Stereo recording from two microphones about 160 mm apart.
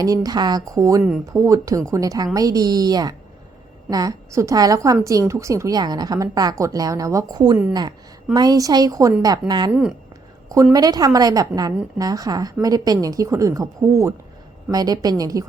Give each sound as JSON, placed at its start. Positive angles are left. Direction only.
{"t": 0.0, "sound": "speech", "side_deg": -25}